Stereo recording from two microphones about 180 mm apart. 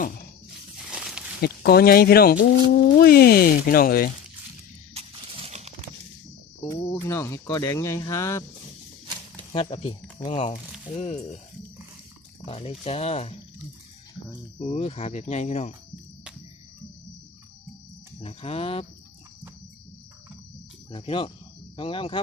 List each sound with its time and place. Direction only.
0.9 s a sound: 5° right (ahead or behind)
1.4 s speech: 60° left (ahead or behind)
4.9 s a sound: 35° right (ahead or behind)
6.7 s speech: 15° left (ahead or behind)
9.5 s speech: 35° left (ahead or behind)
12.5 s speech: 35° left (ahead or behind)
14.6 s speech: 35° left (ahead or behind)
18.2 s speech: 35° left (ahead or behind)
20.9 s speech: 30° left (ahead or behind)